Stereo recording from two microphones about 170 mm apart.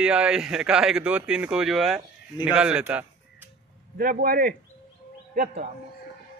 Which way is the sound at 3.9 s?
60° right (ahead or behind).